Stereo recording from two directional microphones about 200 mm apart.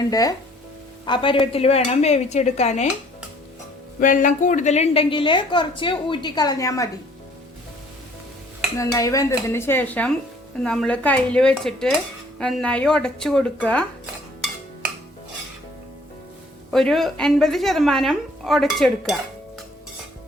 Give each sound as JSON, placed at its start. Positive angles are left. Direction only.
{"t": 0.1, "sound": "speech", "side_deg": 20}
{"t": 4.0, "sound": "a woman's voice", "side_deg": 40}
{"t": 8.8, "sound": "a woman's voice", "side_deg": 15}
{"t": 16.7, "sound": "a woman's voice", "side_deg": 0}